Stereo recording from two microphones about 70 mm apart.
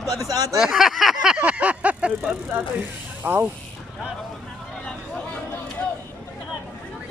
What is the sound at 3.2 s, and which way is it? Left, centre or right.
Speech, right.